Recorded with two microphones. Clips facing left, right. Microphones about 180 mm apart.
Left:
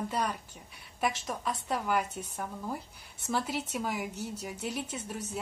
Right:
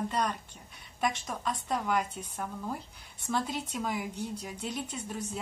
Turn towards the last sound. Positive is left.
turn(degrees=5)  # may be behind; listen again after turning